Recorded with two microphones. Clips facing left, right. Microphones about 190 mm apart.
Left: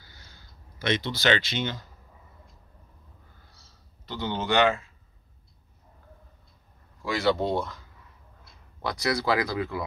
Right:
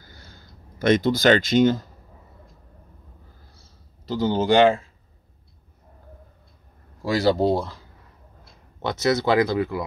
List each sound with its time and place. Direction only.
0.0 s a sound: 50° right (ahead or behind)
4.1 s speech: 40° right (ahead or behind)
7.0 s speech: 35° right (ahead or behind); by 9.8 s 20° right (ahead or behind)